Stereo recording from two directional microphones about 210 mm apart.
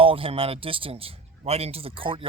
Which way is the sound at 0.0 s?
25° right (ahead or behind).